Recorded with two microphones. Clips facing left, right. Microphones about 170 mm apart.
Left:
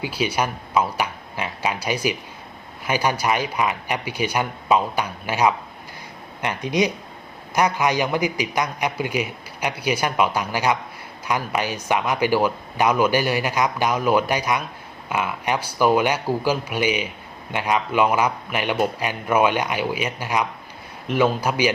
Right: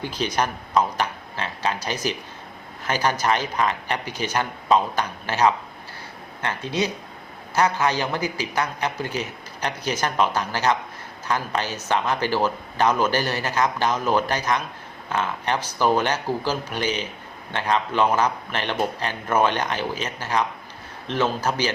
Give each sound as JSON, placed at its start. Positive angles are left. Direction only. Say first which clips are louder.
{"t": 0.0, "sound": "speech", "louder": "left 1 dB", "side_deg": 10}